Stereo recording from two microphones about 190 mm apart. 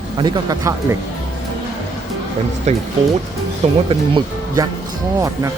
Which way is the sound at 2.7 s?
35° right (ahead or behind).